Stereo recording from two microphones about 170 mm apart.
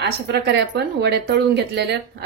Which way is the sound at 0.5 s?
80° right.